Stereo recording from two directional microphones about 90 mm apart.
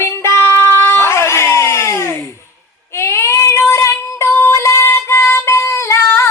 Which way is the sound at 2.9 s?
30° left (ahead or behind).